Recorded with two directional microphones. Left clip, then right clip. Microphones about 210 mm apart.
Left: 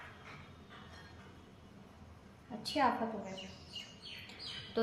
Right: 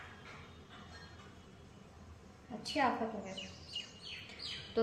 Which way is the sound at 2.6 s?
5° left (ahead or behind).